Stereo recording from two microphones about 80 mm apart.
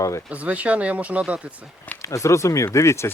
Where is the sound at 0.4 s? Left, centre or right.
Centre.